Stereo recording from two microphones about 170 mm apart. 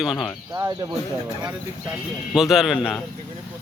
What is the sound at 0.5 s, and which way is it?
Speech, 20° right (ahead or behind).